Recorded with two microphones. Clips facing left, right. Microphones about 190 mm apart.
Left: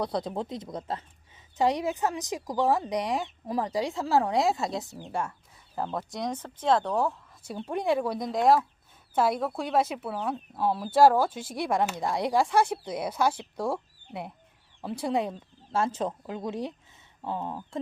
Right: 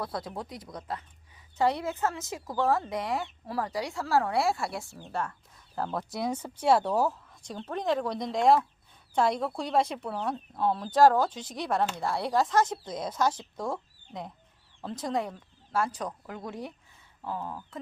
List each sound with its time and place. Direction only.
0.0 s speech: 20° left (ahead or behind)
5.7 s speech: centre (ahead or behind)
7.4 s speech: 10° left (ahead or behind)